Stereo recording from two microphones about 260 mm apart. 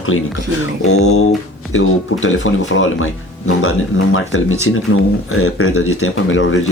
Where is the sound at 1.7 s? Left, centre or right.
Left.